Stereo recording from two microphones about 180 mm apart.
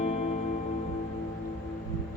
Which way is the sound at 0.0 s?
40° left (ahead or behind).